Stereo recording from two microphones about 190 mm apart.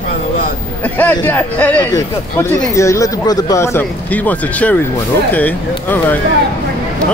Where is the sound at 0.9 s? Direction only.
10° left (ahead or behind).